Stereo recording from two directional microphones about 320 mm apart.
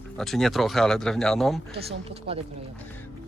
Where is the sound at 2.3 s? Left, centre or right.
Centre.